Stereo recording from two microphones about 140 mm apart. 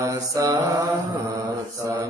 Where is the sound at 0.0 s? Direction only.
25° right (ahead or behind).